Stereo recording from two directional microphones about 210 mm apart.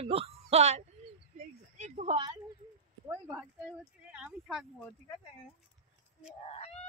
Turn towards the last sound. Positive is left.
turn(degrees=30)  # may be behind; listen again after turning